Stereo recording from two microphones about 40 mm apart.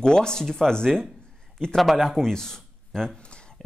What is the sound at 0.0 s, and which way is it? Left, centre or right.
Speech, centre.